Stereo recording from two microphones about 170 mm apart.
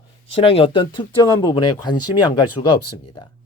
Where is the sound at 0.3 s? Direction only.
35° left (ahead or behind).